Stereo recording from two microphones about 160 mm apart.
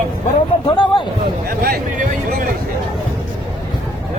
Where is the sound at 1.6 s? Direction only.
65° right (ahead or behind).